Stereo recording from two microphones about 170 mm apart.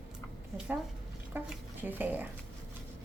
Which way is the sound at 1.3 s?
10° right (ahead or behind).